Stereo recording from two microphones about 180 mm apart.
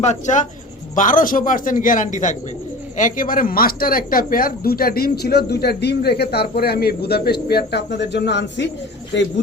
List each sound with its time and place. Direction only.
0.0 s speech: 40° left (ahead or behind); by 8.7 s 75° left (ahead or behind)